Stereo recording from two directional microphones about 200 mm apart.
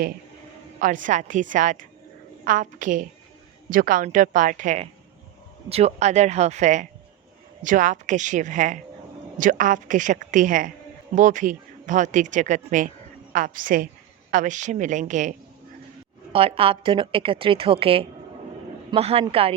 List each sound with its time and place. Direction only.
1.0 s a woman's voice: 40° right (ahead or behind)
16.3 s speech: 30° right (ahead or behind)